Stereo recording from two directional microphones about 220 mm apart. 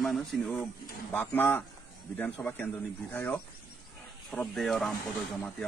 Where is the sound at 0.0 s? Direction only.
Centre (ahead or behind).